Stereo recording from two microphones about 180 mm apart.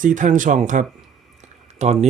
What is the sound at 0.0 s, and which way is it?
Speech, 45° right (ahead or behind).